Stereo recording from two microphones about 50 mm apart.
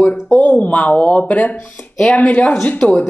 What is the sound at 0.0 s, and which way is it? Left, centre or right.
Speech, left.